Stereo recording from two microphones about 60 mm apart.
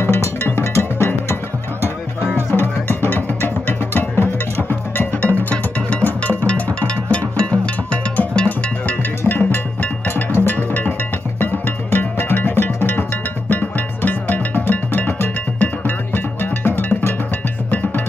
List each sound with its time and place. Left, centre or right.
0.0 s music: left
5.2 s music: left